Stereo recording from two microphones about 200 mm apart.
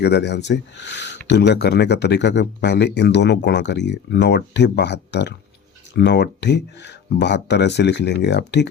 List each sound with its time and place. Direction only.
0.0 s speech: 55° left (ahead or behind)